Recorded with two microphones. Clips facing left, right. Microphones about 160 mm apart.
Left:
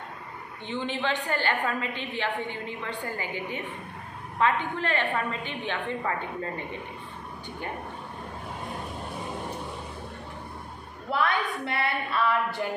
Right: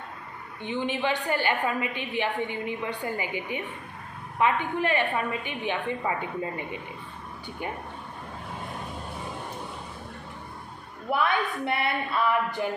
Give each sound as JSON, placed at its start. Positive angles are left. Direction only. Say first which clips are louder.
{"t": 0.7, "sound": "a woman's voice", "louder": "right 2 dB", "side_deg": -15}
{"t": 11.1, "sound": "a woman's voice", "louder": "right 1 dB", "side_deg": -20}